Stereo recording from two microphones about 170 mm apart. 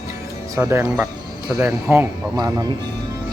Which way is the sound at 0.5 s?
15° right (ahead or behind).